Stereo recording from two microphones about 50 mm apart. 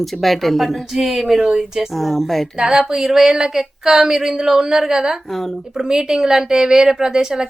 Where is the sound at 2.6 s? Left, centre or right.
Centre.